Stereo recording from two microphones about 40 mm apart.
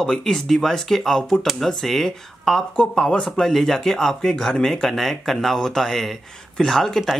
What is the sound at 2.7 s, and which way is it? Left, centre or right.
Speech, left.